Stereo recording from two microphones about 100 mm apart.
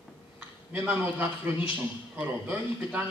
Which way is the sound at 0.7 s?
20° right (ahead or behind).